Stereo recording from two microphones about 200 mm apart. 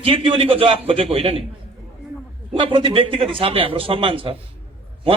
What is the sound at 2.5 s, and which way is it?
A man's voice, 25° right (ahead or behind).